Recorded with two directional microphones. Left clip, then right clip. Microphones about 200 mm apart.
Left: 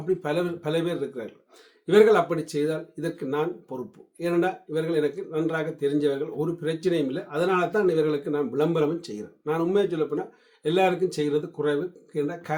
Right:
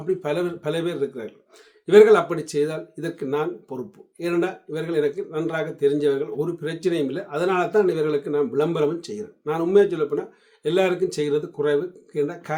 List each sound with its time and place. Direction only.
0.0 s speech: 15° right (ahead or behind)